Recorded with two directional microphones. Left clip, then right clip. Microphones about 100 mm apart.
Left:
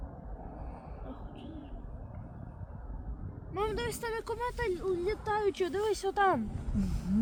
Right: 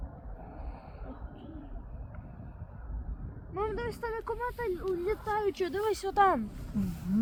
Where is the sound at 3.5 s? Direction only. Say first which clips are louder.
Even; 15° right (ahead or behind).